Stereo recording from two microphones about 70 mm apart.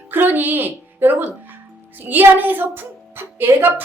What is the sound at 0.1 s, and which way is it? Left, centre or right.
A woman's voice, right.